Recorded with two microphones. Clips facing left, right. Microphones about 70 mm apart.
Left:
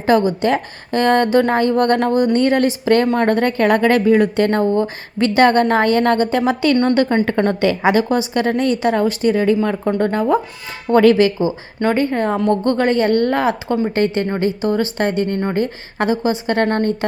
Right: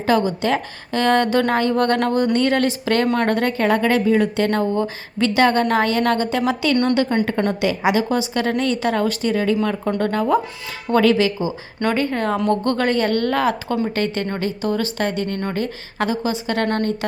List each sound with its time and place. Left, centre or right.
0.3 s a woman's voice: left
3.6 s a woman's voice: left